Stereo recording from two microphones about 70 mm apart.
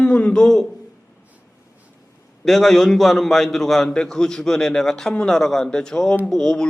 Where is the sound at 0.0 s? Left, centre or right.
Centre.